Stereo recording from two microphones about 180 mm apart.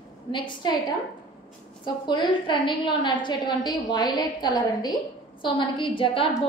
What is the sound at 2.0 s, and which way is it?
A woman's voice, 25° left (ahead or behind).